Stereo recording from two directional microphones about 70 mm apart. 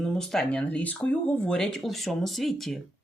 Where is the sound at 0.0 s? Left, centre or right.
Centre.